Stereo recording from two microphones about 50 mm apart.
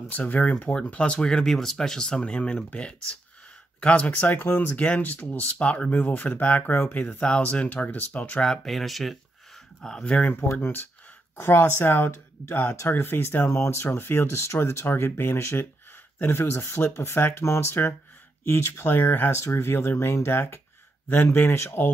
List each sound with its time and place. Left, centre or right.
0.1 s speech: left
0.8 s speech: left
3.8 s speech: left
4.6 s speech: left
8.5 s speech: centre
10.0 s speech: left
10.6 s speech: left
11.3 s speech: left
13.6 s speech: left
13.8 s speech: left
16.9 s speech: left
17.3 s speech: left
19.3 s speech: left